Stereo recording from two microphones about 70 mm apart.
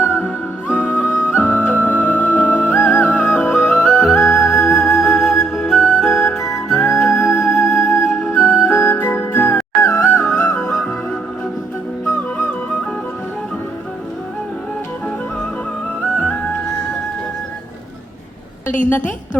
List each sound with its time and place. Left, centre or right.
0.7 s music: left
3.8 s music: centre
8.3 s music: left
10.4 s music: centre
16.1 s music: centre
18.9 s a woman's voice: left